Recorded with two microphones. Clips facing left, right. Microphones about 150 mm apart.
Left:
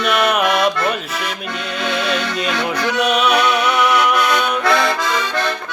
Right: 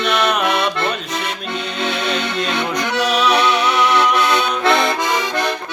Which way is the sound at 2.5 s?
30° right (ahead or behind).